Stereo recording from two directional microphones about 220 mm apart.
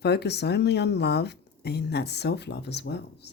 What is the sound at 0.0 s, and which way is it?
A woman's voice, 50° left (ahead or behind).